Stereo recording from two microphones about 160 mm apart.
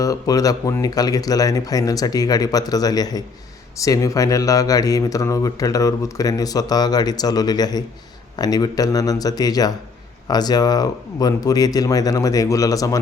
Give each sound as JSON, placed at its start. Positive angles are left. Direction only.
{"t": 0.0, "sound": "speech", "side_deg": 20}